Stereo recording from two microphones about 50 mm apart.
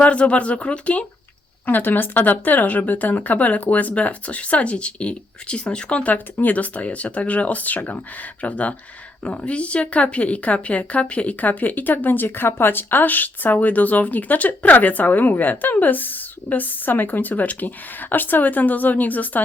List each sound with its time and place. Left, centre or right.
0.0 s speech: left
1.6 s speech: left